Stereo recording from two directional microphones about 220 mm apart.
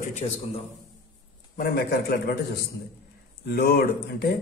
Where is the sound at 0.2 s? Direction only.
25° left (ahead or behind).